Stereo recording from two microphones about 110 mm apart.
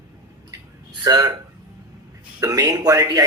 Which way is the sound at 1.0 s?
35° right (ahead or behind).